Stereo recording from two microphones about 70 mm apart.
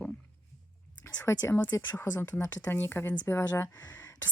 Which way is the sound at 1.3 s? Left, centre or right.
Left.